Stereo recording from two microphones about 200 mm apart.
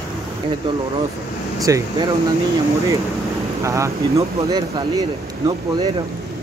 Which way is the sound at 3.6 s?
15° right (ahead or behind).